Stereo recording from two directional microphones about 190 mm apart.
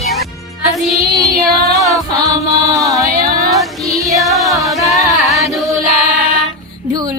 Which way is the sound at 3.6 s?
Centre (ahead or behind).